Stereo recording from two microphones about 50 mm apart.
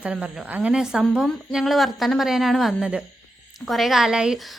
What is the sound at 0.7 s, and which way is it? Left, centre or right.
A woman's voice, centre.